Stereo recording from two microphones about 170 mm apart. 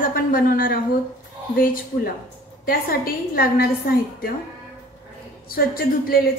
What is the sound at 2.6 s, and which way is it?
A woman's voice, 55° left (ahead or behind).